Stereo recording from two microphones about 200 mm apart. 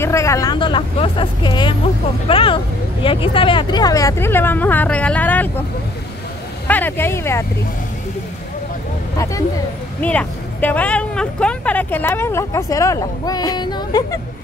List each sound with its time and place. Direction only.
0.0 s speech: 15° left (ahead or behind)
6.7 s speech: 10° left (ahead or behind)
9.1 s speech: 15° left (ahead or behind)